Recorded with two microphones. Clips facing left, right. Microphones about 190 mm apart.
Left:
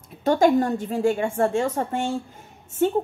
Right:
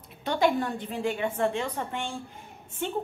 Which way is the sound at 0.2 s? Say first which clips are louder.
Left 7 dB; 45° left (ahead or behind).